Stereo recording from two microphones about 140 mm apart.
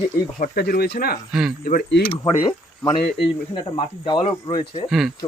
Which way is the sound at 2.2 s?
35° left (ahead or behind).